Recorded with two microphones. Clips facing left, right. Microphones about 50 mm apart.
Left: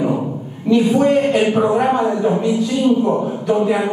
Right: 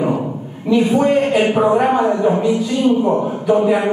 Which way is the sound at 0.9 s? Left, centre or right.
Centre.